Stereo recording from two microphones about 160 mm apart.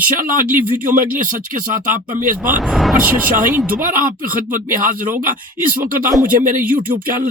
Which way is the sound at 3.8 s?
60° right (ahead or behind).